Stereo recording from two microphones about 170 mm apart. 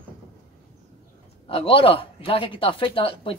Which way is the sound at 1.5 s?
35° left (ahead or behind).